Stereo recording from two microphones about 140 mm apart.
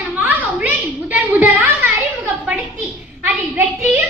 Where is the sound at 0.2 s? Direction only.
10° right (ahead or behind).